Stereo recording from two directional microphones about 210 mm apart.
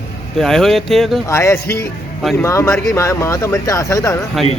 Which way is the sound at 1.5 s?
50° left (ahead or behind).